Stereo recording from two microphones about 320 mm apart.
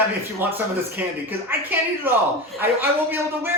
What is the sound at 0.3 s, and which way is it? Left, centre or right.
Speech, centre.